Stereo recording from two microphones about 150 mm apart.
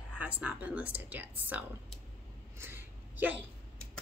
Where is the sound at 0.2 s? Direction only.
10° right (ahead or behind).